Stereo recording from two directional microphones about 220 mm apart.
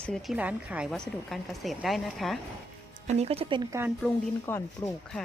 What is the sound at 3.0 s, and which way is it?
Speech, 30° right (ahead or behind).